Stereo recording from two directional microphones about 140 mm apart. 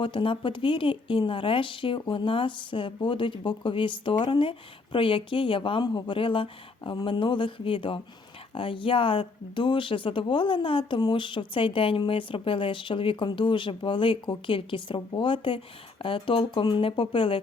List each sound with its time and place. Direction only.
0.0 s speech: 35° left (ahead or behind)